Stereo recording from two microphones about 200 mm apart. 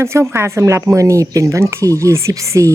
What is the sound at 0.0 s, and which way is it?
Speech, 15° right (ahead or behind).